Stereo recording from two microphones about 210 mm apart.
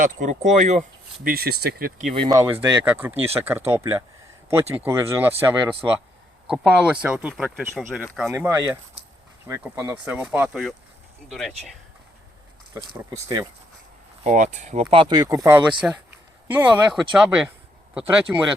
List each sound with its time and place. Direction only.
0.0 s speech: 35° right (ahead or behind)
2.1 s speech: 20° right (ahead or behind); by 8.0 s centre (ahead or behind)
8.4 s speech: 15° right (ahead or behind)
12.7 s speech: 15° right (ahead or behind)
14.3 s speech: 35° right (ahead or behind); by 18.4 s 10° right (ahead or behind)